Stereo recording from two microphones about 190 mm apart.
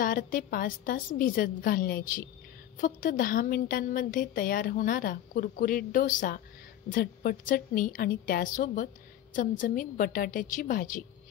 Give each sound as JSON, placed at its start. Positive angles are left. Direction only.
{"t": 0.0, "sound": "a woman's voice", "side_deg": 45}